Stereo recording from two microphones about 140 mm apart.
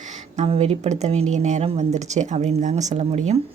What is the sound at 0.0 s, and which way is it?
A woman's voice, 60° right (ahead or behind).